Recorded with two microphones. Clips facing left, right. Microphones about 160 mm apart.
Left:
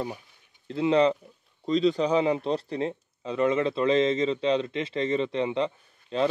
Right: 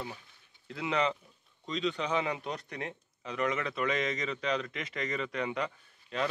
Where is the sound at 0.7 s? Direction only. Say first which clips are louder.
Left 10 dB; 30° left (ahead or behind).